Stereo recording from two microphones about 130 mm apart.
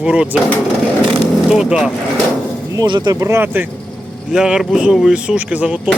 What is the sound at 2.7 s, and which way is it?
Speech, 30° right (ahead or behind).